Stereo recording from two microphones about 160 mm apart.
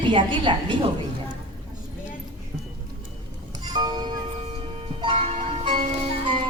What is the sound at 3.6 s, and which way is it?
Music, 25° right (ahead or behind).